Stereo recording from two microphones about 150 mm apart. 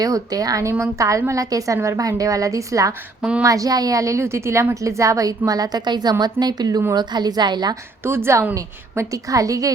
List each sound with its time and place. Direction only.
0.0 s a woman's voice: 25° right (ahead or behind)
8.0 s a woman's voice: 15° right (ahead or behind)